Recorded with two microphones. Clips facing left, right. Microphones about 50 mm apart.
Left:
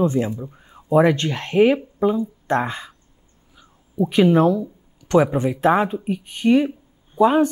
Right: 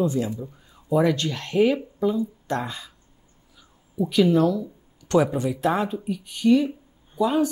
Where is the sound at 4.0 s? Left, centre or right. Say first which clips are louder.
Left 3 dB; left.